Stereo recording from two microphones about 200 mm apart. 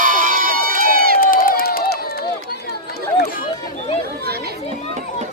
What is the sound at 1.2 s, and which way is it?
Run, 45° left (ahead or behind).